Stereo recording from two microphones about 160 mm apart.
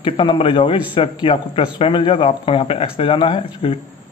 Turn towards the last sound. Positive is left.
turn(degrees=35)  # may be behind; listen again after turning